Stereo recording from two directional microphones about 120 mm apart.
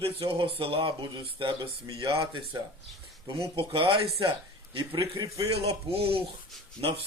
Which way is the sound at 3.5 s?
45° right (ahead or behind).